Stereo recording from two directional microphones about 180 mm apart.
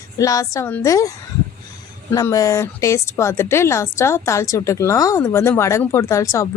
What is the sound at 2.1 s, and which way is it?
Speech, 20° left (ahead or behind).